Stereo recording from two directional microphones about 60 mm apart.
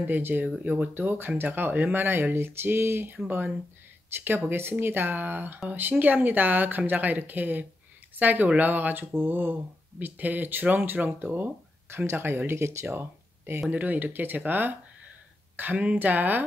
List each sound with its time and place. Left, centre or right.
0.0 s speech: right
0.9 s speech: right